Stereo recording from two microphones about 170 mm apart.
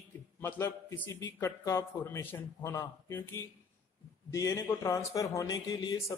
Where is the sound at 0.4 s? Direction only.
15° left (ahead or behind).